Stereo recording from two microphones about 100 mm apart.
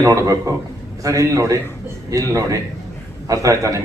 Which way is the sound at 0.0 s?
30° right (ahead or behind).